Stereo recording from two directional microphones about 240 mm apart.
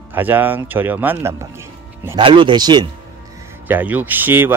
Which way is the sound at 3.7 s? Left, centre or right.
Centre.